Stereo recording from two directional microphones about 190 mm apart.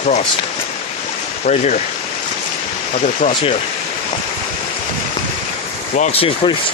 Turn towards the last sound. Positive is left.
turn(degrees=30)  # may be behind; listen again after turning